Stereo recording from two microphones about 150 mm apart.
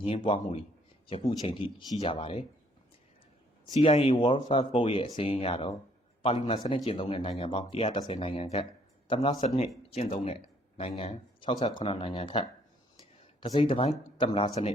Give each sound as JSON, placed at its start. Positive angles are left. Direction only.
{"t": 1.4, "sound": "speech", "side_deg": 35}
{"t": 3.8, "sound": "speech", "side_deg": 40}